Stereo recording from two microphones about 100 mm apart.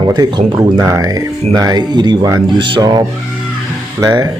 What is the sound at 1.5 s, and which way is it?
Speech, 40° right (ahead or behind).